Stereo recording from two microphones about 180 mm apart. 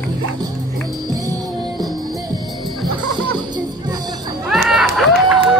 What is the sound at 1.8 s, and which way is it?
Music, 20° right (ahead or behind).